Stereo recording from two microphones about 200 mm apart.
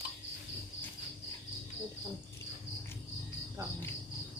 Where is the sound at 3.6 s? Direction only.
15° right (ahead or behind).